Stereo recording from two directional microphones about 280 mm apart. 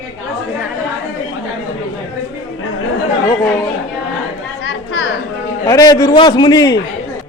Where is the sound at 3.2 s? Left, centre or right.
Centre.